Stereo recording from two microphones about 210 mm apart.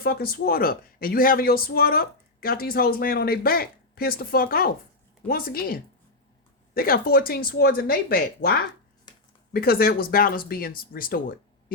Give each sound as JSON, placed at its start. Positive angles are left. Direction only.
{"t": 0.0, "sound": "speech", "side_deg": 45}
{"t": 9.1, "sound": "a sound", "side_deg": 20}
{"t": 9.5, "sound": "speech", "side_deg": 45}